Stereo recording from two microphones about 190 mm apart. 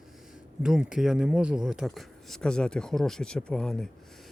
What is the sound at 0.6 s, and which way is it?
Speech, 5° right (ahead or behind).